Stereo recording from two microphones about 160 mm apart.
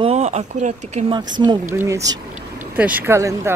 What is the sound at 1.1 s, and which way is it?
Speech, 25° right (ahead or behind).